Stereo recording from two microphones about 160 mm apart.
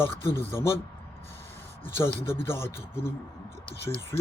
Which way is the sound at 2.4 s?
15° left (ahead or behind).